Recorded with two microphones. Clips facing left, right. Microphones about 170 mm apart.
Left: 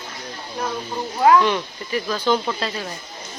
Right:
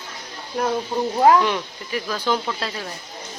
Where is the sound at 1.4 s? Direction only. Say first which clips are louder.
Left 2 dB; 5° right (ahead or behind).